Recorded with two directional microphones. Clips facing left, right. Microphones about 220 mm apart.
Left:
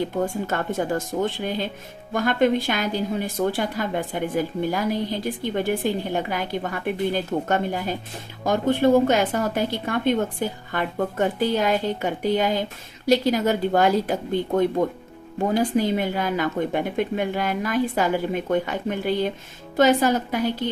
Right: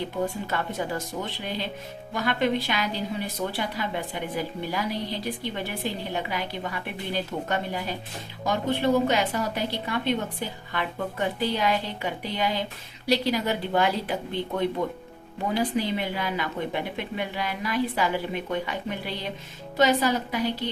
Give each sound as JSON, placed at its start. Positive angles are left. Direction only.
{"t": 0.3, "sound": "a woman's voice", "side_deg": 45}